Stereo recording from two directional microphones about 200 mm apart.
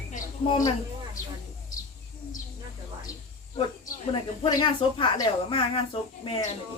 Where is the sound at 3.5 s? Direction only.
25° left (ahead or behind).